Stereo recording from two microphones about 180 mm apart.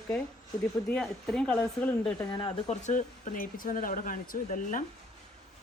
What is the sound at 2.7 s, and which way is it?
Speech, 45° left (ahead or behind).